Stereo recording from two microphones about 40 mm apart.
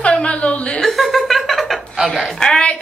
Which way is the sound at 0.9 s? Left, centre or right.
Centre.